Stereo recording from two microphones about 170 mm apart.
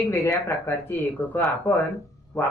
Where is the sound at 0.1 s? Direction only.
15° left (ahead or behind).